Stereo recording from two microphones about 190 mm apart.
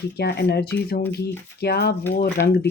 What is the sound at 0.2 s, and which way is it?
Speech, 60° left (ahead or behind).